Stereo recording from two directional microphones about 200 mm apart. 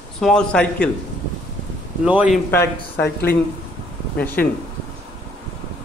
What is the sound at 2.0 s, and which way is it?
Speech, 5° right (ahead or behind).